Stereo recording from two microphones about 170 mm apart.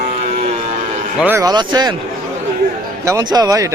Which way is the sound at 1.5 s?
25° right (ahead or behind).